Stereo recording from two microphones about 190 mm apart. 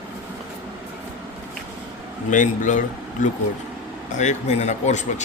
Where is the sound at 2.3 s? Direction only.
40° left (ahead or behind).